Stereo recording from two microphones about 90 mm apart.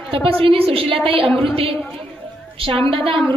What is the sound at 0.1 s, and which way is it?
A woman's voice, 90° right.